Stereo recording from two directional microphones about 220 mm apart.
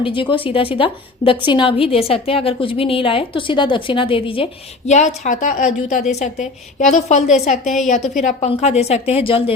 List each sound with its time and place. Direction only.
0.0 s a woman's voice: 25° left (ahead or behind)